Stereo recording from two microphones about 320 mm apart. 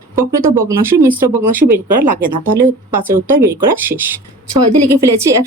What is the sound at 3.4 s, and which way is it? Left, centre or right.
Speech, centre.